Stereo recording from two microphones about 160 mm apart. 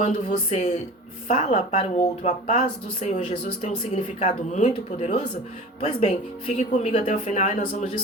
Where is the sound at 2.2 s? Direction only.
45° left (ahead or behind).